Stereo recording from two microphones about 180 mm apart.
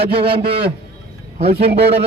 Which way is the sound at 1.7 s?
65° right (ahead or behind).